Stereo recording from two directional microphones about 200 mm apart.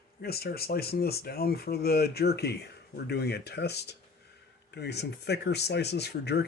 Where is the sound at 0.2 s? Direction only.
50° left (ahead or behind).